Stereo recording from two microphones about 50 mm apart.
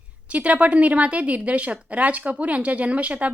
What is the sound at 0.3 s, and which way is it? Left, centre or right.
A woman's voice, right.